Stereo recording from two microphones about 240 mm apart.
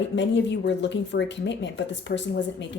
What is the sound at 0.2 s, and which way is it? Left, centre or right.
Speech, left.